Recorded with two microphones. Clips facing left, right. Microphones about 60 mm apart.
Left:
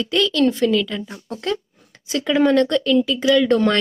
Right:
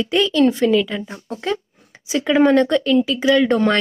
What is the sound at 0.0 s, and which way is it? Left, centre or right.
A woman's voice, centre.